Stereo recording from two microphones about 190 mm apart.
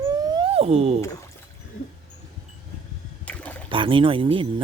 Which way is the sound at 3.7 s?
25° right (ahead or behind).